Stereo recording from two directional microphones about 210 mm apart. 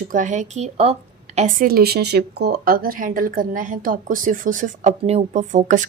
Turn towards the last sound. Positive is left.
turn(degrees=-35)  # may be behind; listen again after turning